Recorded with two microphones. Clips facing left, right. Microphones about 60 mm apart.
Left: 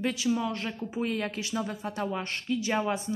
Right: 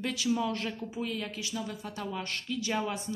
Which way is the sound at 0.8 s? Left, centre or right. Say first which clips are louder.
Left 4 dB; left.